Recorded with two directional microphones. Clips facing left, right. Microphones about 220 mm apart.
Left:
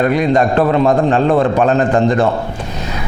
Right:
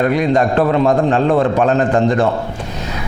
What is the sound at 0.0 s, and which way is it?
A man's voice, 20° left (ahead or behind).